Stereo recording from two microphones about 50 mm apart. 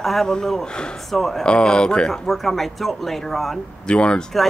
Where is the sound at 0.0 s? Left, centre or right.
Centre.